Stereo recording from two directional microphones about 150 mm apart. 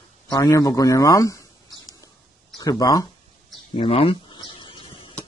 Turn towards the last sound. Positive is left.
turn(degrees=35)  # may be behind; listen again after turning